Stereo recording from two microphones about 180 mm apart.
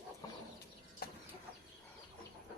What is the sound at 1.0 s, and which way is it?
Chicken, 55° left (ahead or behind).